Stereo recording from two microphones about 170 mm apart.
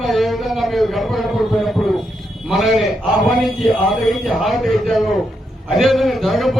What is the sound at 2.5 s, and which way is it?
A man's voice, centre (ahead or behind).